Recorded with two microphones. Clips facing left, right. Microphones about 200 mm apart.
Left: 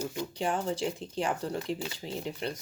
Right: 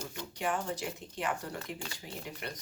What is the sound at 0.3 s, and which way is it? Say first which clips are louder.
Speech: left 2 dB; 30° left (ahead or behind).